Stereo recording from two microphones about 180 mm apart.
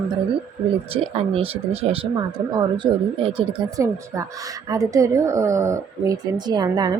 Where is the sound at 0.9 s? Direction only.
30° right (ahead or behind).